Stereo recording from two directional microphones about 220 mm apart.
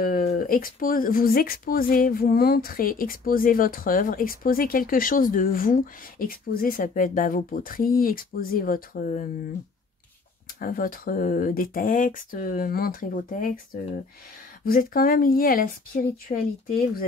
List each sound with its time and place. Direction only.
0.0 s speech: 40° left (ahead or behind)
10.6 s speech: 40° left (ahead or behind)
14.6 s speech: 40° left (ahead or behind)